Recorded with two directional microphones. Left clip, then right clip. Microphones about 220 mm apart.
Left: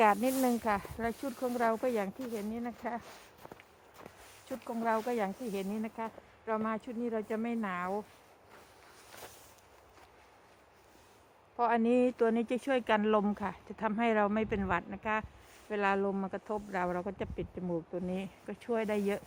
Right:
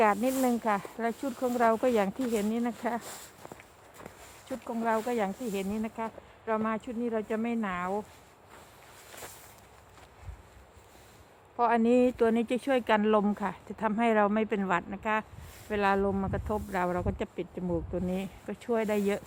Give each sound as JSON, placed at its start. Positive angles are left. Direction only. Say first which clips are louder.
{"t": 0.0, "sound": "speech", "louder": "right 2 dB", "side_deg": 15}
{"t": 1.5, "sound": "speech", "louder": "right 6 dB", "side_deg": -15}
{"t": 1.9, "sound": "speech", "louder": "right 7 dB", "side_deg": -25}
{"t": 2.3, "sound": "speech", "louder": "right 8 dB", "side_deg": -45}
{"t": 3.4, "sound": "walk", "louder": "right 4 dB", "side_deg": -10}
{"t": 4.4, "sound": "speech", "louder": "right 3 dB", "side_deg": 5}
{"t": 4.9, "sound": "speech", "louder": "right 3 dB", "side_deg": 0}
{"t": 11.5, "sound": "speech", "louder": "right 4 dB", "side_deg": 0}